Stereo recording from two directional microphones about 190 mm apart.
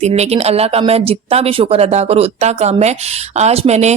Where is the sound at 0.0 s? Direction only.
35° right (ahead or behind).